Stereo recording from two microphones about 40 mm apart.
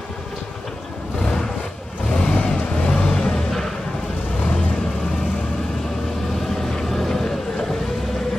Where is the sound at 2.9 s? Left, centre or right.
Centre.